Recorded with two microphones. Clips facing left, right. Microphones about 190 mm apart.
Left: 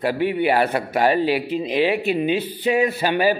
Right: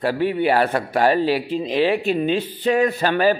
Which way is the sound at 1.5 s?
15° left (ahead or behind).